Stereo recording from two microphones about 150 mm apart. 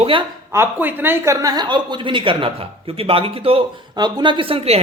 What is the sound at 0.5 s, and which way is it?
Speech, 15° right (ahead or behind).